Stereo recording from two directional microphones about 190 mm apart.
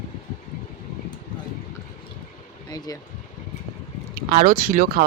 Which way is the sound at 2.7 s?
20° left (ahead or behind).